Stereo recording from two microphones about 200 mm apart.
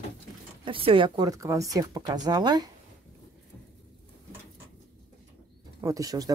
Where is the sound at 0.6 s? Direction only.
25° right (ahead or behind).